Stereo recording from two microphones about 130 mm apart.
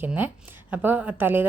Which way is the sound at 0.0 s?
15° right (ahead or behind).